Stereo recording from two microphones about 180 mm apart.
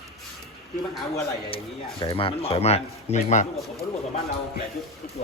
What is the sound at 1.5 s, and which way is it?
Speech, 30° left (ahead or behind).